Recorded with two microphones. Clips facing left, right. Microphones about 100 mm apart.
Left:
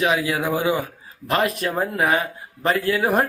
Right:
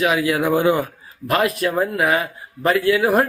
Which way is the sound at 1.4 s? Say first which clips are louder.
Right 2 dB; 40° left (ahead or behind).